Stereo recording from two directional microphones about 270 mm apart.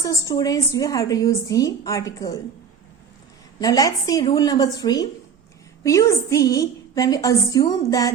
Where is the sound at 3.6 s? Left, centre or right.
Centre.